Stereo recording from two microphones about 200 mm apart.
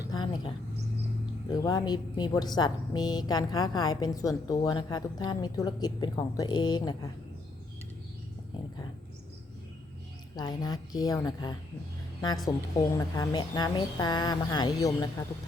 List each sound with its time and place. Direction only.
0.1 s speech: 20° left (ahead or behind)
10.3 s speech: 20° left (ahead or behind)